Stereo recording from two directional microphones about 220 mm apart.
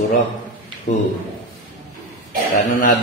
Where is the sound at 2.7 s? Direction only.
40° left (ahead or behind).